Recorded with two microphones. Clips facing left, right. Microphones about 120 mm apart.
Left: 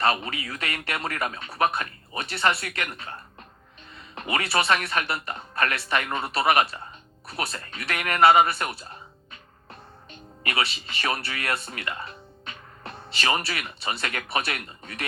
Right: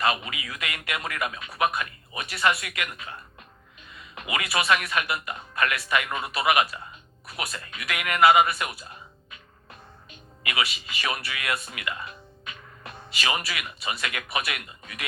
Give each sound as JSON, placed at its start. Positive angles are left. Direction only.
{"t": 0.0, "sound": "speech", "side_deg": 35}
{"t": 10.1, "sound": "music", "side_deg": 30}
{"t": 10.8, "sound": "speech", "side_deg": 30}